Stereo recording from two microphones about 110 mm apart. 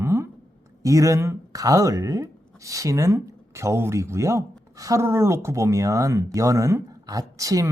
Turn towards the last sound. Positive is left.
turn(degrees=-30)  # may be behind; listen again after turning